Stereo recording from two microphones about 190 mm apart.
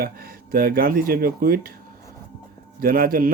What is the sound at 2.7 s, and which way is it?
Speech, 50° right (ahead or behind).